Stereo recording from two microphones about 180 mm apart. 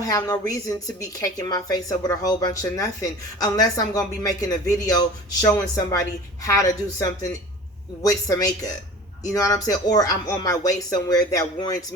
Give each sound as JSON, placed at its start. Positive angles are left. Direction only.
{"t": 0.0, "sound": "a woman's voice", "side_deg": 20}